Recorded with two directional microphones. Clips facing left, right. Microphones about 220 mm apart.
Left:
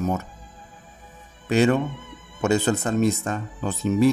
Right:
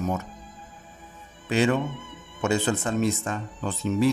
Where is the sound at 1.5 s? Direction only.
45° left (ahead or behind).